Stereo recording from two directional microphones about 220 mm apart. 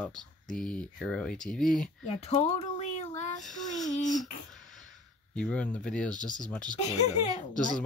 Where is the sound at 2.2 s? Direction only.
30° left (ahead or behind).